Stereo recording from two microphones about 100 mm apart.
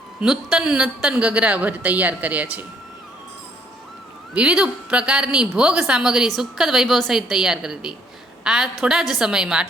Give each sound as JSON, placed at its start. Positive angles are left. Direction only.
{"t": 0.2, "sound": "a woman's voice", "side_deg": -10}
{"t": 4.4, "sound": "a woman's voice", "side_deg": -10}